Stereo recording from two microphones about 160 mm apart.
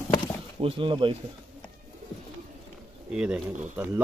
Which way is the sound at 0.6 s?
35° right (ahead or behind).